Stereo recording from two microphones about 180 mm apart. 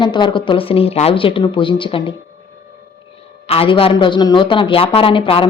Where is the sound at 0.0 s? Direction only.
25° left (ahead or behind).